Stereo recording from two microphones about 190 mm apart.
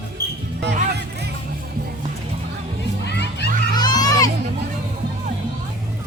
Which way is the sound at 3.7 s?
20° left (ahead or behind).